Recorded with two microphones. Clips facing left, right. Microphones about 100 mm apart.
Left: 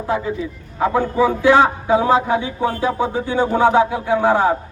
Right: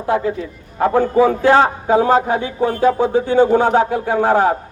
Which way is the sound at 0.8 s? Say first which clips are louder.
Right 3 dB; 50° right (ahead or behind).